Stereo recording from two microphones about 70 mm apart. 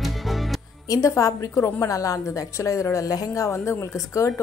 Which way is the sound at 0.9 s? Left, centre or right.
Left.